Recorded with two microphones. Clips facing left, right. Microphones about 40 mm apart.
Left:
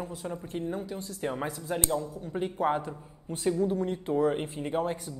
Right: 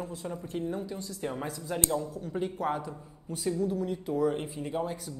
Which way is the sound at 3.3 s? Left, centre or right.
Left.